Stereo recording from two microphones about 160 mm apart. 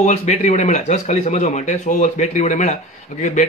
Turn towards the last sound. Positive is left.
turn(degrees=50)  # may be behind; listen again after turning